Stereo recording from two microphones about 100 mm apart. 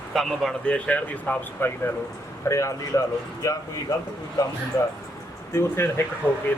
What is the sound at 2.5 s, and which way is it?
A man's voice, 30° left (ahead or behind).